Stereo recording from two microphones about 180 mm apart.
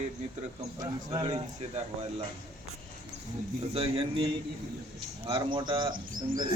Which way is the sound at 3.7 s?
30° right (ahead or behind).